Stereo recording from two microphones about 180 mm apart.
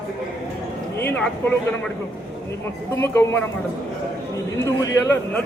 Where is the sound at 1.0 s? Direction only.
10° left (ahead or behind).